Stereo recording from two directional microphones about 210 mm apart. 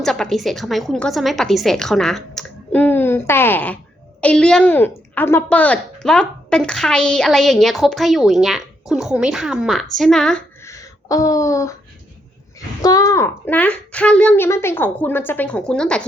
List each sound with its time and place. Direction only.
0.0 s speech: centre (ahead or behind)
12.8 s speech: 15° left (ahead or behind)